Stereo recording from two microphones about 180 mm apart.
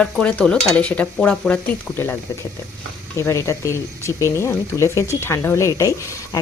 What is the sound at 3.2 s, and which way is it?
Speech, 15° left (ahead or behind).